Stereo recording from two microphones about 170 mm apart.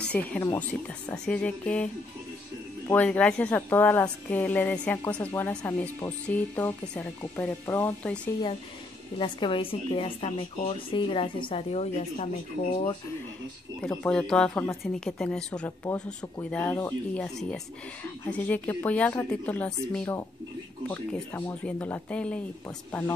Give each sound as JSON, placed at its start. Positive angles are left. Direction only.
{"t": 0.1, "sound": "speech", "side_deg": 10}
{"t": 2.9, "sound": "speech", "side_deg": 5}
{"t": 9.2, "sound": "speech", "side_deg": 30}
{"t": 13.7, "sound": "speech", "side_deg": 5}